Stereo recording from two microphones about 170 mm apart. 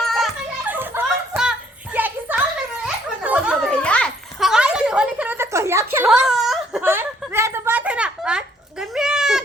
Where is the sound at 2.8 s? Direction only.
10° right (ahead or behind).